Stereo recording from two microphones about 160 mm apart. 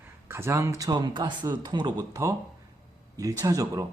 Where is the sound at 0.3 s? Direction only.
15° right (ahead or behind).